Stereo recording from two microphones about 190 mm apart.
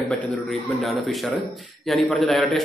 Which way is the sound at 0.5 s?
Centre (ahead or behind).